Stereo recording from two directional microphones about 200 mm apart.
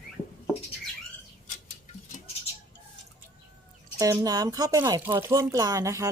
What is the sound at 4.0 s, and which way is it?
Speech, 20° right (ahead or behind).